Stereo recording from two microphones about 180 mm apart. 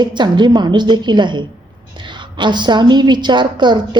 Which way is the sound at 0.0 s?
25° right (ahead or behind).